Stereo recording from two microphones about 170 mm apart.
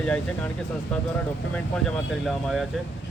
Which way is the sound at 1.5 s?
5° left (ahead or behind).